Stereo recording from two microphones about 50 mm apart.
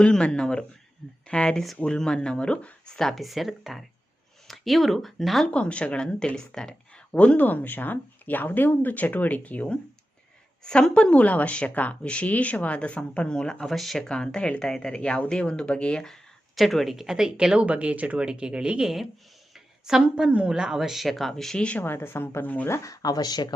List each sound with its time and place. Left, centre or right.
0.0 s speech: left
1.5 s speech: centre; by 2.9 s left
2.9 s speech: centre
3.2 s speech: centre
5.5 s speech: left
7.1 s speech: left
10.6 s speech: centre
16.6 s speech: centre
17.4 s speech: centre
19.5 s a sound: centre
20.3 s speech: centre
21.8 s speech: left
22.6 s speech: left